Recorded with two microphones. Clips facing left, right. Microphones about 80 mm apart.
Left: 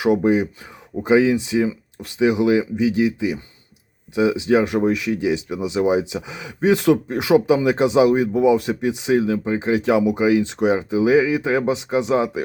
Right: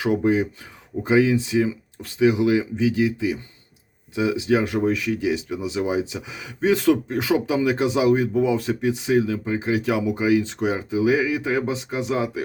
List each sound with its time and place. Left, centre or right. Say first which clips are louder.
0.0 s speech: left 3 dB; centre